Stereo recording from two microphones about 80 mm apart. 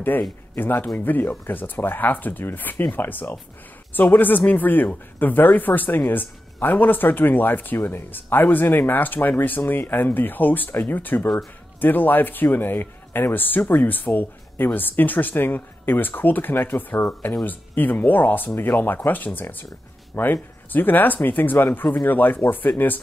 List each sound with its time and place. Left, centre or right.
0.6 s speech: left